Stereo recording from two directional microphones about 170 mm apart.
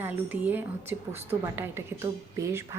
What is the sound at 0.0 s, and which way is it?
Speech, 10° right (ahead or behind).